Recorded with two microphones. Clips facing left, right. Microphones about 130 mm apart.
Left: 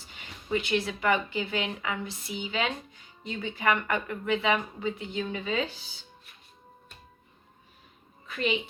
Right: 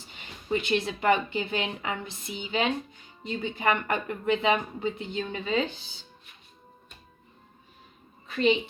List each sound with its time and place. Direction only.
0.7 s a woman's voice: 25° right (ahead or behind)
3.2 s speech: 35° right (ahead or behind)
3.5 s a woman's voice: 25° right (ahead or behind)
8.3 s a woman's voice: 30° right (ahead or behind)